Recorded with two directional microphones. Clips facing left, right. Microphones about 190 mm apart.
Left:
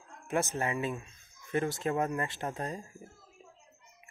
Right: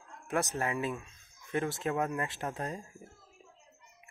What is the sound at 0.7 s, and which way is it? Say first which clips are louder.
Speech: even; centre (ahead or behind).